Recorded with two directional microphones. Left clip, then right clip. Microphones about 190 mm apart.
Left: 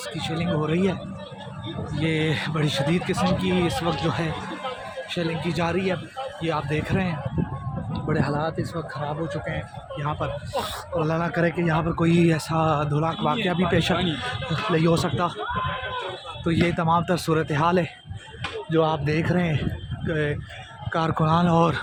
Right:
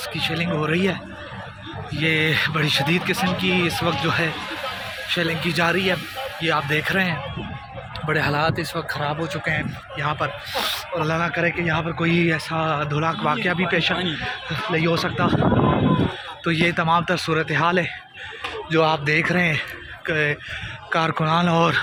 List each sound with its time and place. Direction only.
0.1 s speech: 5° left (ahead or behind)
2.0 s speech: 10° left (ahead or behind)
5.0 s speech: centre (ahead or behind); by 13.0 s 30° left (ahead or behind)
13.3 s speech: 15° left (ahead or behind)
16.4 s speech: 15° left (ahead or behind)
18.7 s speech: 10° left (ahead or behind)